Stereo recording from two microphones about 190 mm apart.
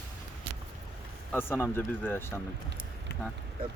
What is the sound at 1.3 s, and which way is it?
Speech, 10° left (ahead or behind).